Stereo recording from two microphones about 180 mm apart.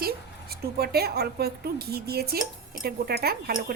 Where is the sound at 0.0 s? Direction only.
60° right (ahead or behind).